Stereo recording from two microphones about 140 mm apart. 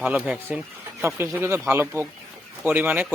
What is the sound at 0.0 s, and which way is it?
Speech, 10° right (ahead or behind).